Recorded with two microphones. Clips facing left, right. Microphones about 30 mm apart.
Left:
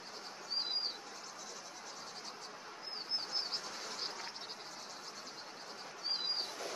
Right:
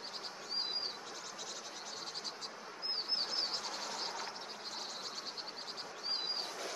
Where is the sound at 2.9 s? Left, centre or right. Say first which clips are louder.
Right 3 dB; right.